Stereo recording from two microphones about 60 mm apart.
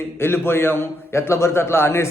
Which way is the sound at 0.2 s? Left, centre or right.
Left.